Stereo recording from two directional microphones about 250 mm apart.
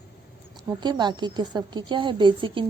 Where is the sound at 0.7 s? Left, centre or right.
Centre.